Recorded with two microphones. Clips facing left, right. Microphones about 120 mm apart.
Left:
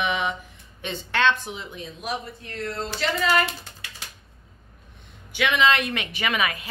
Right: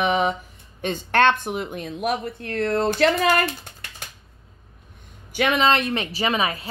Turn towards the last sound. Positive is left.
turn(degrees=-30)  # may be behind; listen again after turning